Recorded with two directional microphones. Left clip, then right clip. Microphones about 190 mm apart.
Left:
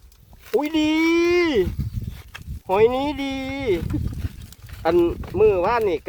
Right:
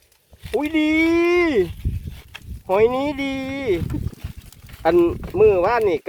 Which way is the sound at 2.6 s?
35° right (ahead or behind).